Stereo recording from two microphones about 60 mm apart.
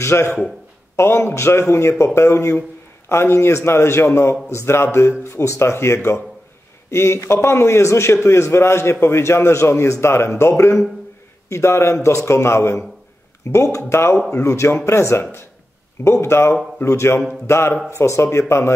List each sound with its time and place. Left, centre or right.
0.0 s a man's voice: left